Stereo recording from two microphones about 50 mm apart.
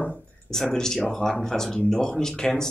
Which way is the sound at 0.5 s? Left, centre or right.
Centre.